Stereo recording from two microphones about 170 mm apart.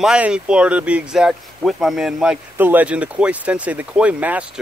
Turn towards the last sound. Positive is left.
turn(degrees=-10)  # may be behind; listen again after turning